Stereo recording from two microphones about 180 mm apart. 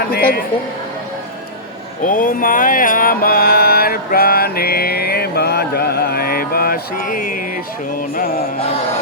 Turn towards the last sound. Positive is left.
turn(degrees=55)  # may be behind; listen again after turning